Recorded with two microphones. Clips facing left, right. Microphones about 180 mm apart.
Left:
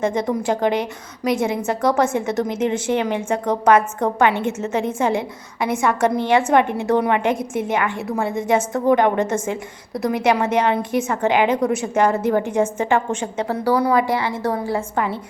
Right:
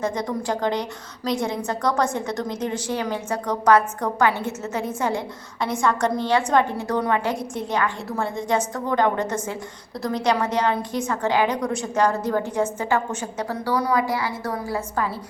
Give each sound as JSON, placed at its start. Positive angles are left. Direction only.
{"t": 0.0, "sound": "a woman's voice", "side_deg": 25}